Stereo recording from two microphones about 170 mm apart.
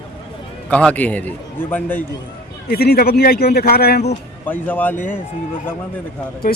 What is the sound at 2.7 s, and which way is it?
Speech, 65° left (ahead or behind).